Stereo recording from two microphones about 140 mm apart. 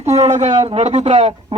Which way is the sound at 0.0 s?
50° right (ahead or behind).